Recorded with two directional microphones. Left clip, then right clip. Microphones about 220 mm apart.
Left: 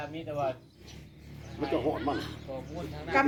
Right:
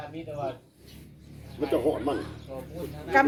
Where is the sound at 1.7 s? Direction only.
45° right (ahead or behind).